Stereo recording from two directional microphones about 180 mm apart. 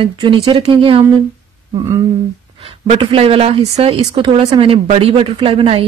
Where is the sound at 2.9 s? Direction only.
35° right (ahead or behind).